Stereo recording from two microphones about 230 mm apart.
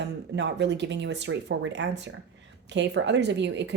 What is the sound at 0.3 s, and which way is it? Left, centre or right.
Speech, right.